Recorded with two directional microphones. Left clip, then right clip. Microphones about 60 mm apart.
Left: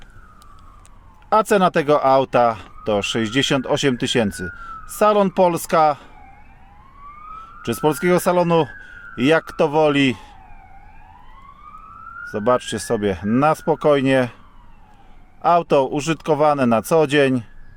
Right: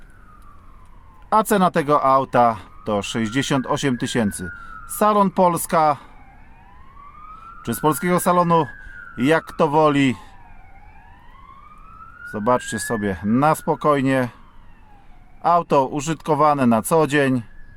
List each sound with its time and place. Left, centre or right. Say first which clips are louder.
1.3 s speech: left 2 dB; left
7.6 s speech: left 1 dB; left
12.3 s speech: left 1 dB; left
15.4 s speech: left 1 dB; left